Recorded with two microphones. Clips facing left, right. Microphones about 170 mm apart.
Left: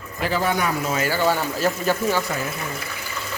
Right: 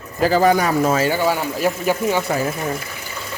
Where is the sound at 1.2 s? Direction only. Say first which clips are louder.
Right 2 dB; 10° right (ahead or behind).